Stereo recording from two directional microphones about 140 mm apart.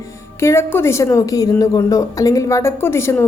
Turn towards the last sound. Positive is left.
turn(degrees=20)  # may be behind; listen again after turning